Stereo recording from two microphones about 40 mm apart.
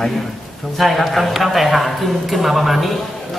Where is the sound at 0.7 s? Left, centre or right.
Centre.